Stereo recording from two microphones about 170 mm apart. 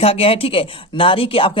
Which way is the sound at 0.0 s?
35° left (ahead or behind).